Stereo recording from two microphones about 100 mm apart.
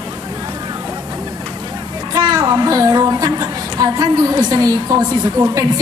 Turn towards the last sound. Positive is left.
turn(degrees=-40)  # may be behind; listen again after turning